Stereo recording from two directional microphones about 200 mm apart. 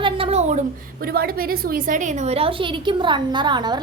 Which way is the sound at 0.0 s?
30° right (ahead or behind).